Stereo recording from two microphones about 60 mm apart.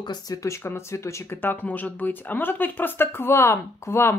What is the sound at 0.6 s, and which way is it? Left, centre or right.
Speech, left.